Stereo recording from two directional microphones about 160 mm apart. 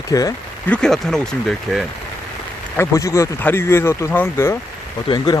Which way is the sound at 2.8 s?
20° left (ahead or behind).